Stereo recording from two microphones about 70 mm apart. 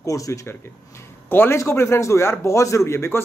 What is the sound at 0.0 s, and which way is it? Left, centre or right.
Speech, left.